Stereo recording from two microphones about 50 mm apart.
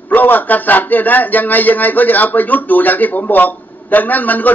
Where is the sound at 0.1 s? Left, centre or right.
Left.